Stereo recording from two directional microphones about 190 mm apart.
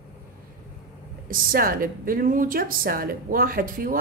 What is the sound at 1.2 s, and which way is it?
A woman's voice, 50° right (ahead or behind).